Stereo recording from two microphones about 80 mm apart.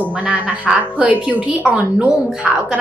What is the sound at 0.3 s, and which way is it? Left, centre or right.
A woman's voice, centre.